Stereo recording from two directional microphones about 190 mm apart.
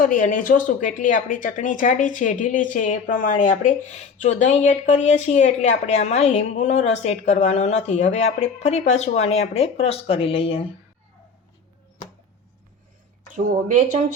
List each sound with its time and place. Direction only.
0.0 s speech: 45° left (ahead or behind); by 10.7 s 30° left (ahead or behind)
13.3 s speech: 45° right (ahead or behind)